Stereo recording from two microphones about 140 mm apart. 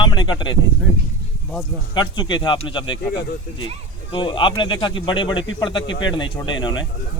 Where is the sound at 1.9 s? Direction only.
35° left (ahead or behind).